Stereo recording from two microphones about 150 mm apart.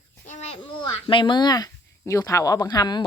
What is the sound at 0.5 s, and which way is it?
A child's voice, 35° left (ahead or behind).